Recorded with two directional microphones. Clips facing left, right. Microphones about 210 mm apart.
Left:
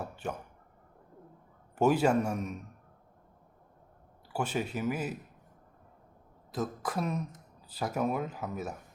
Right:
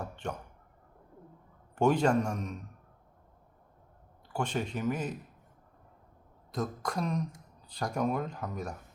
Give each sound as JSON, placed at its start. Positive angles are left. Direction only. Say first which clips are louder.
{"t": 0.0, "sound": "speech", "louder": "left 1 dB", "side_deg": 5}
{"t": 1.7, "sound": "a man's voice", "louder": "even", "side_deg": 5}
{"t": 4.3, "sound": "a man's voice", "louder": "even", "side_deg": 5}
{"t": 6.5, "sound": "speech", "louder": "even", "side_deg": 5}